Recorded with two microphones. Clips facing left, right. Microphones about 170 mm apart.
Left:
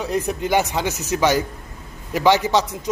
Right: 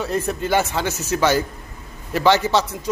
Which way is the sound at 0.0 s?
15° left (ahead or behind).